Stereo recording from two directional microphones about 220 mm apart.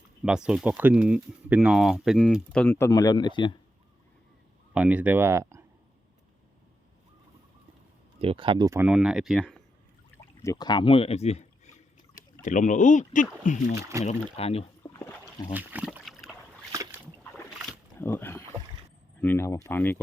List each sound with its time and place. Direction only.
0.3 s speech: 5° right (ahead or behind); by 3.6 s 20° left (ahead or behind)
4.7 s speech: 5° right (ahead or behind)
8.2 s speech: 25° right (ahead or behind); by 9.6 s centre (ahead or behind)
10.4 s speech: 15° left (ahead or behind)
14.8 s a sound: 20° left (ahead or behind)
15.5 s a sound: 5° right (ahead or behind)
17.9 s speech: 10° left (ahead or behind)